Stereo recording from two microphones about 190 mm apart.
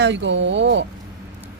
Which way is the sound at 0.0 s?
70° right (ahead or behind).